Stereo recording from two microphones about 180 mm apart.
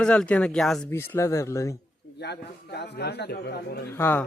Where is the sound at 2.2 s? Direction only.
70° left (ahead or behind).